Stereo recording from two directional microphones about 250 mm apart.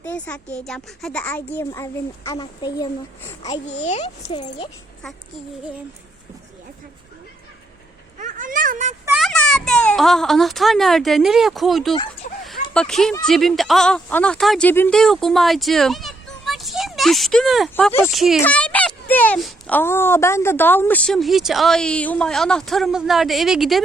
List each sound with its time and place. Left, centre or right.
0.0 s speech: centre
3.4 s speech: left
8.2 s a sound: right
9.0 s a child's voice: centre
12.2 s a sound: left
12.7 s speech: centre